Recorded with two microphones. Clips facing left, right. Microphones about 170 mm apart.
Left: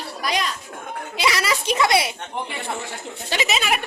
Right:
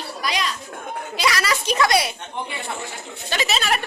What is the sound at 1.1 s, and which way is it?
A child's voice, 25° left (ahead or behind).